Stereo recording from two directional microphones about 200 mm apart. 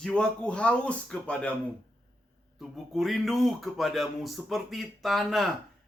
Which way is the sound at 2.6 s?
Centre (ahead or behind).